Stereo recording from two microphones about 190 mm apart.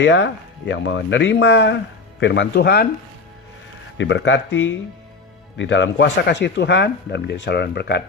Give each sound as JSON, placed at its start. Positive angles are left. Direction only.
{"t": 0.0, "sound": "speech", "side_deg": 70}
{"t": 3.9, "sound": "speech", "side_deg": 70}